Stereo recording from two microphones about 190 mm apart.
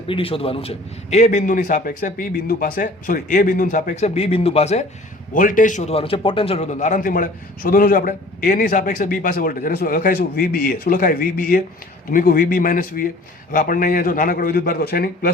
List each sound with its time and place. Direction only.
0.1 s a man's voice: 30° left (ahead or behind)
5.3 s a man's voice: 45° left (ahead or behind)